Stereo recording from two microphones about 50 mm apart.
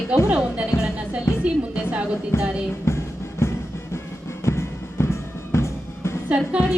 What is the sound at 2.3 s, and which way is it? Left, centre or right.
Music, left.